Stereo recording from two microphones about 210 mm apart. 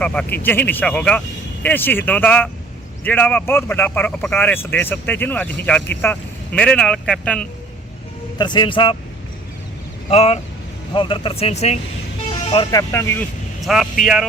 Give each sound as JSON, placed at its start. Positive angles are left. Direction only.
{"t": 0.0, "sound": "speech", "side_deg": 5}
{"t": 8.4, "sound": "speech", "side_deg": 20}
{"t": 10.1, "sound": "speech", "side_deg": 30}
{"t": 12.5, "sound": "speech", "side_deg": 20}
{"t": 13.6, "sound": "speech", "side_deg": 0}